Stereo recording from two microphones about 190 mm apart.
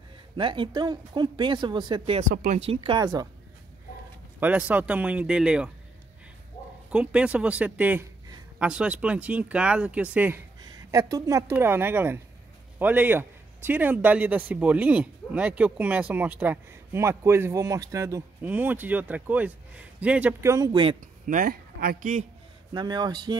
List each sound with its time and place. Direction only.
0.4 s speech: 25° right (ahead or behind)
2.2 s speech: 45° right (ahead or behind)
2.6 s speech: 30° right (ahead or behind)
4.4 s speech: 10° right (ahead or behind)
6.5 s bow-wow: 25° left (ahead or behind)
6.9 s speech: 5° right (ahead or behind); by 20.9 s 20° right (ahead or behind)
21.3 s a man's voice: 45° right (ahead or behind)
22.7 s speech: 25° right (ahead or behind)